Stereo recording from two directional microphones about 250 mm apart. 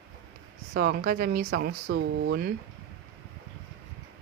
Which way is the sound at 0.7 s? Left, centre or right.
Right.